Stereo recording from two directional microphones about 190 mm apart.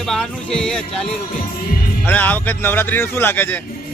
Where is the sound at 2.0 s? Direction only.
10° left (ahead or behind).